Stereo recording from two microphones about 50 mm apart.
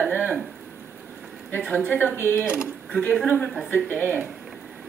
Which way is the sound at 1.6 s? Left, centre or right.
Left.